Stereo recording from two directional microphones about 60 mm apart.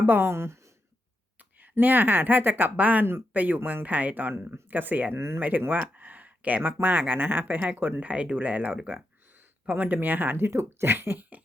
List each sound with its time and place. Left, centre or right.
0.0 s speech: right
1.4 s a sound: right
1.7 s a woman's voice: right
5.1 s speech: right
5.4 s a woman's voice: right
5.9 s a sound: right
6.6 s speech: right
10.5 s a woman's voice: right